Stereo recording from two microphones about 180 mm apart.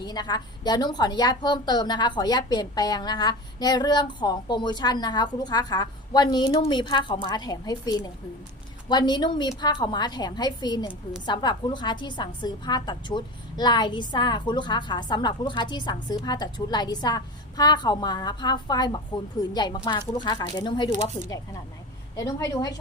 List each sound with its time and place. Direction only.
0.0 s a woman's voice: 20° left (ahead or behind)
22.1 s a woman's voice: 20° left (ahead or behind)